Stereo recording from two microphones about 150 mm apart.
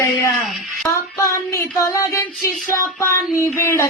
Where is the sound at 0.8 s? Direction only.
20° left (ahead or behind).